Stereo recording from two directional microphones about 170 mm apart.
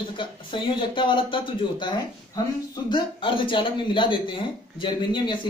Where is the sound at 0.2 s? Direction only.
30° left (ahead or behind).